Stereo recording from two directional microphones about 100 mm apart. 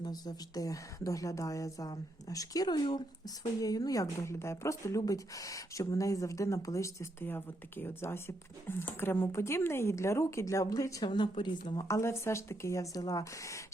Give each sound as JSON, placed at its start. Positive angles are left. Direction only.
{"t": 0.0, "sound": "a woman's voice", "side_deg": 40}
{"t": 11.0, "sound": "speech", "side_deg": 50}
{"t": 11.9, "sound": "speech", "side_deg": 30}